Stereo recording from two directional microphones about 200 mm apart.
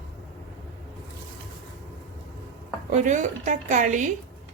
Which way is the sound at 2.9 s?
35° right (ahead or behind).